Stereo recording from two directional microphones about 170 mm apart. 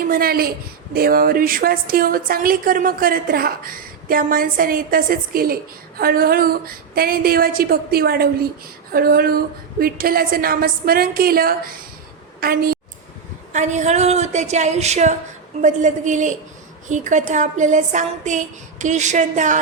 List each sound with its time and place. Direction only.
0.1 s a woman's voice: 60° right (ahead or behind)
13.5 s a woman's voice: 45° right (ahead or behind)